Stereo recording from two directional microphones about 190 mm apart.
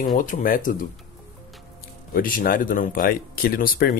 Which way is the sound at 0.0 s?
45° left (ahead or behind).